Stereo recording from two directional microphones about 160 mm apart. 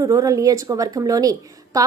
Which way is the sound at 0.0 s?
20° right (ahead or behind).